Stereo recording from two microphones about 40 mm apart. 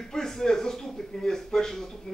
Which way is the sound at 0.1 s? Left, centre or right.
Centre.